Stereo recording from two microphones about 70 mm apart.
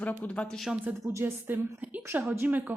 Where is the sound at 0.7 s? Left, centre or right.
Centre.